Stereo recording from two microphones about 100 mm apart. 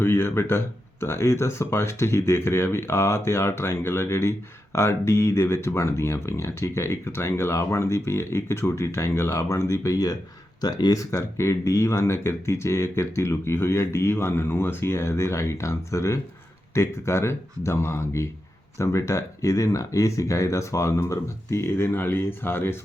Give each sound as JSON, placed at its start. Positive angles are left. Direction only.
{"t": 0.0, "sound": "speech", "side_deg": 20}